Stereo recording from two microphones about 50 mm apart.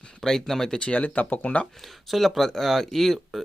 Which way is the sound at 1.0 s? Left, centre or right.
Left.